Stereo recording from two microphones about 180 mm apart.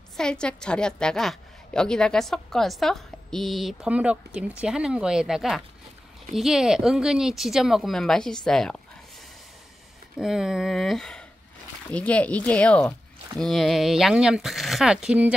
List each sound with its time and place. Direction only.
0.2 s a woman's voice: 5° left (ahead or behind)
10.1 s a woman's voice: 5° right (ahead or behind)